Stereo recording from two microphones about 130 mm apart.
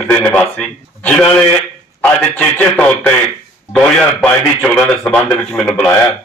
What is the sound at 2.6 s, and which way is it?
Speech, 10° left (ahead or behind).